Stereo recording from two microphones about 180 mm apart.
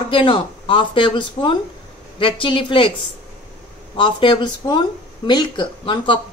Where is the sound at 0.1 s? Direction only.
30° left (ahead or behind).